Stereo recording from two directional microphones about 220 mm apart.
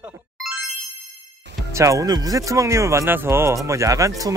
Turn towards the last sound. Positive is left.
turn(degrees=-15)  # may be behind; listen again after turning